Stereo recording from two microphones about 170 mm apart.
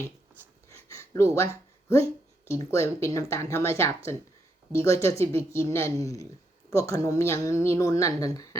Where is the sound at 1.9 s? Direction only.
15° left (ahead or behind).